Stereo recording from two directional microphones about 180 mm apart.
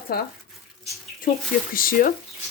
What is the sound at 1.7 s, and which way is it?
Speech, 50° left (ahead or behind).